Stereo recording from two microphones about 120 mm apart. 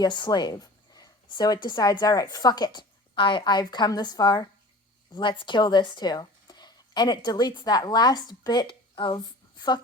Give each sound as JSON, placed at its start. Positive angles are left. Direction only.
{"t": 0.0, "sound": "a woman's voice", "side_deg": 35}